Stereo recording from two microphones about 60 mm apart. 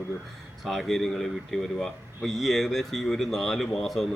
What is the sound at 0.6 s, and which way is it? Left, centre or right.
A man's voice, centre.